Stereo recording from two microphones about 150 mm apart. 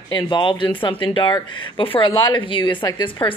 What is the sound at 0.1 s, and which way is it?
A woman's voice, 35° left (ahead or behind).